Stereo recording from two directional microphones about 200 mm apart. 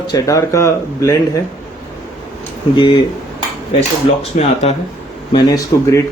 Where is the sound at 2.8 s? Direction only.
25° left (ahead or behind).